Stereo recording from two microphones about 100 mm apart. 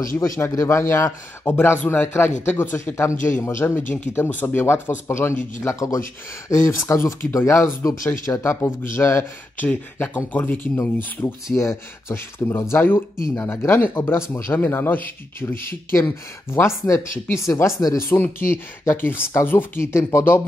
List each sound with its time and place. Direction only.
0.0 s a man's voice: 30° left (ahead or behind)